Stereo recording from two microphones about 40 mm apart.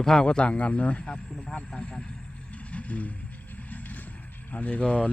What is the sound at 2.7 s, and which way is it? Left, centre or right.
Vehicle, left.